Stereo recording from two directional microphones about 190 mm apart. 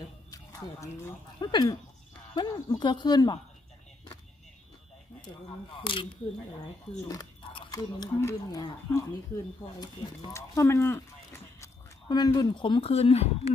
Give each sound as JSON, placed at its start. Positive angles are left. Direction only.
{"t": 0.3, "sound": "speech", "side_deg": 15}
{"t": 5.8, "sound": "speech", "side_deg": 25}
{"t": 7.1, "sound": "speech", "side_deg": 20}